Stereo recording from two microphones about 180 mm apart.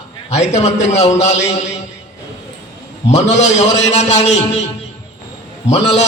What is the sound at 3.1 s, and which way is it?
A man's voice, 40° left (ahead or behind).